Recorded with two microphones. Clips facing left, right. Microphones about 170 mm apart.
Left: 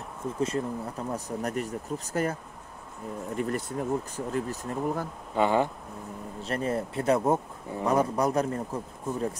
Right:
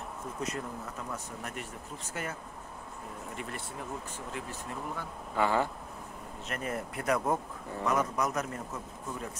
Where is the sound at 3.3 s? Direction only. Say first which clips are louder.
Left 12 dB; 40° left (ahead or behind).